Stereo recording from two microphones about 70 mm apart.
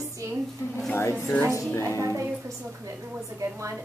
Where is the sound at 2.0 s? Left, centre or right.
Right.